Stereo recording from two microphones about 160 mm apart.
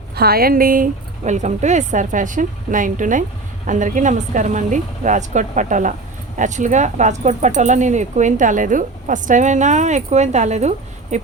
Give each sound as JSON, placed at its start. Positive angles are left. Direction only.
{"t": 0.2, "sound": "speech", "side_deg": -75}